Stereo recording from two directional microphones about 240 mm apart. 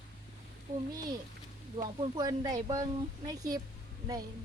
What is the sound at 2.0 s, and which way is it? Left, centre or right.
Speech, centre.